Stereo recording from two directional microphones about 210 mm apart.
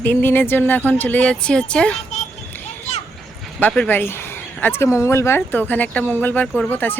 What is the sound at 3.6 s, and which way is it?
Speech, 5° left (ahead or behind).